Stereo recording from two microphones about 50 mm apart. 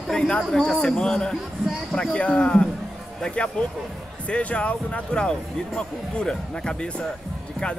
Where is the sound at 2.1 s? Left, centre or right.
Left.